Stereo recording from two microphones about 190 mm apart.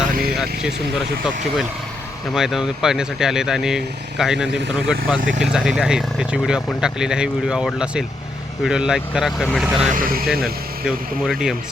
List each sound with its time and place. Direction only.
0.6 s speech: centre (ahead or behind)
9.9 s speech: 50° right (ahead or behind)
10.4 s speech: centre (ahead or behind)